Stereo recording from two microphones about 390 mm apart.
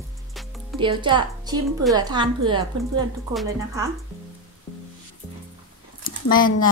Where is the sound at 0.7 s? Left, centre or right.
Centre.